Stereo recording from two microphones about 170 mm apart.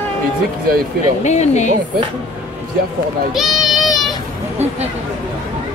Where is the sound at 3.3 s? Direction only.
Centre (ahead or behind).